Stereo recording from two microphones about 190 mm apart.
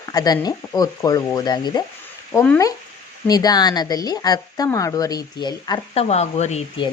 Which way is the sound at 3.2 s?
20° left (ahead or behind).